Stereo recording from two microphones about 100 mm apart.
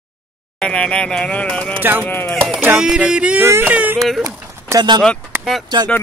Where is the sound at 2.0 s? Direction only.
20° left (ahead or behind).